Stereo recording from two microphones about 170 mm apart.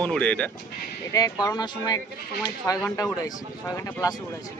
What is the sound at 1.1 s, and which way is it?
Speech, 20° left (ahead or behind).